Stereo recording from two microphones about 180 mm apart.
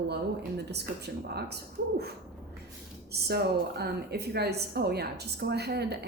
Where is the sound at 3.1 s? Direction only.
65° right (ahead or behind).